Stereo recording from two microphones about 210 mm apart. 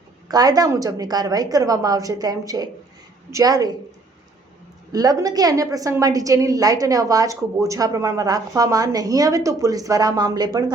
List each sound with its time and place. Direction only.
0.3 s a woman's voice: 20° right (ahead or behind)
4.9 s a woman's voice: 15° right (ahead or behind)